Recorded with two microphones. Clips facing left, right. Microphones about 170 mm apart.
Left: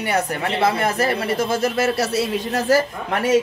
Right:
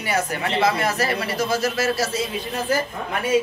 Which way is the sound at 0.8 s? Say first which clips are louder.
Left 3 dB; 55° left (ahead or behind).